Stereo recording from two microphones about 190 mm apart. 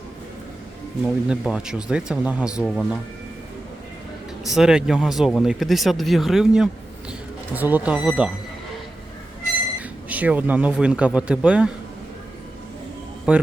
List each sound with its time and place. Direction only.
1.0 s speech: 5° right (ahead or behind)
4.5 s speech: 5° right (ahead or behind)
10.1 s speech: 10° right (ahead or behind)
13.3 s speech: 5° right (ahead or behind)